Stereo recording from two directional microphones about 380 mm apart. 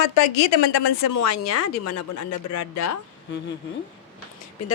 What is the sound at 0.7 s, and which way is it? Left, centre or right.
Speech, left.